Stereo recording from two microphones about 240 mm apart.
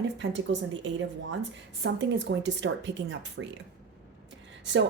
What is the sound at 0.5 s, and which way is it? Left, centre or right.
Speech, right.